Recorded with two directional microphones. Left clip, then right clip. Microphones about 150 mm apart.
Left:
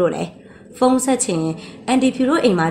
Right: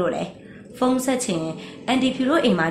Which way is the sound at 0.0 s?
45° left (ahead or behind).